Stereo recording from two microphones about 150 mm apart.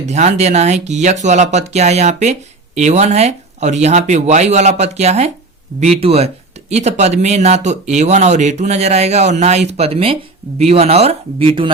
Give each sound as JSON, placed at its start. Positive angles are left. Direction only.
{"t": 0.1, "sound": "speech", "side_deg": -50}